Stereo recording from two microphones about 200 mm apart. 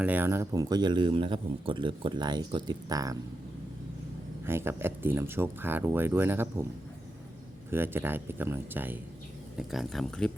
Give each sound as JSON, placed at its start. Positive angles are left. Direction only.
{"t": 0.0, "sound": "speech", "side_deg": -10}
{"t": 4.4, "sound": "speech", "side_deg": -10}
{"t": 7.7, "sound": "speech", "side_deg": -10}